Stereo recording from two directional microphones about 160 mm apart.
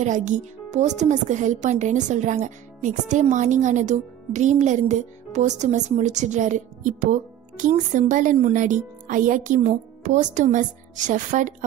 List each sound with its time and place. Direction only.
0.0 s speech: 50° right (ahead or behind)